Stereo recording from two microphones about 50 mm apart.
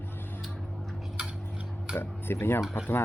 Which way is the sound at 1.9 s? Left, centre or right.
Left.